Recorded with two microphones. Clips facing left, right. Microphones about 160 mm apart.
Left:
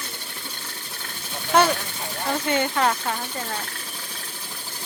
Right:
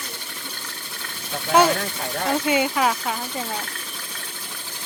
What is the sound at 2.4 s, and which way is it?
Speech, 10° right (ahead or behind).